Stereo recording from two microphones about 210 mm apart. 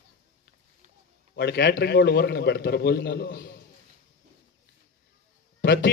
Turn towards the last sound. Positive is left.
turn(degrees=50)  # may be behind; listen again after turning